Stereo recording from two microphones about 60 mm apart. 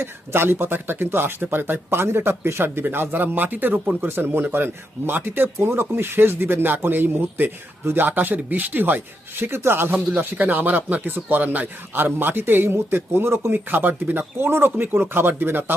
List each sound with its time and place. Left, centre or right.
0.0 s speech: right